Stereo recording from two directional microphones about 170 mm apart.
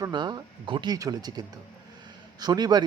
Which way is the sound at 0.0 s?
25° right (ahead or behind).